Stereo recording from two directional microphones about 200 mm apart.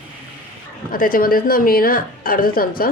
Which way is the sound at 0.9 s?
45° left (ahead or behind).